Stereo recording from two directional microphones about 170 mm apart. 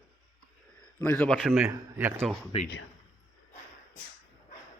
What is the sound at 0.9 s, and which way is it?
Speech, 10° left (ahead or behind).